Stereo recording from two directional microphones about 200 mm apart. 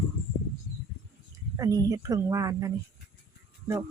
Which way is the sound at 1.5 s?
15° right (ahead or behind).